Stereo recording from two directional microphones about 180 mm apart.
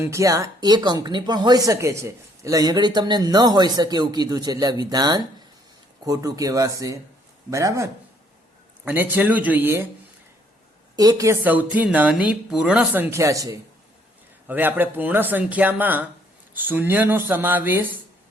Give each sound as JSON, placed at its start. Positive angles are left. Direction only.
{"t": 0.0, "sound": "speech", "side_deg": -15}
{"t": 10.9, "sound": "speech", "side_deg": -20}